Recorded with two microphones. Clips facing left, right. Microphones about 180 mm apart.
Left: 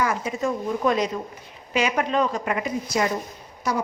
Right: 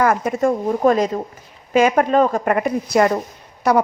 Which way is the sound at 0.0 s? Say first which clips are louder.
Right 7 dB; 55° right (ahead or behind).